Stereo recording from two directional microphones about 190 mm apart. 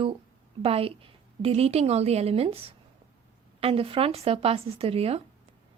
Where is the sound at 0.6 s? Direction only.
30° right (ahead or behind).